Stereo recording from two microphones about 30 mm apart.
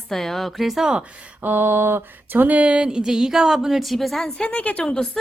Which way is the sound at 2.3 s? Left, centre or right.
Right.